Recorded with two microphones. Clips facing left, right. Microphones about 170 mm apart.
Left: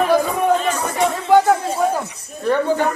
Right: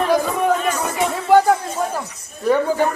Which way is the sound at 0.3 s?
5° right (ahead or behind).